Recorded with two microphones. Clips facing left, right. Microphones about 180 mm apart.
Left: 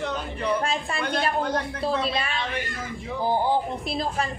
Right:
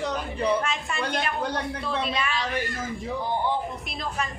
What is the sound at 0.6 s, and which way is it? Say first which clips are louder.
A woman's voice: left 2 dB; 35° left (ahead or behind).